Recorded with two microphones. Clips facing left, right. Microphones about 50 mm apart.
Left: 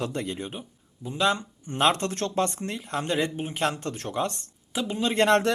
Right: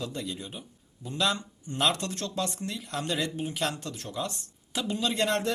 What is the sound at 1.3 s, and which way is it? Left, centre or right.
Speech, left.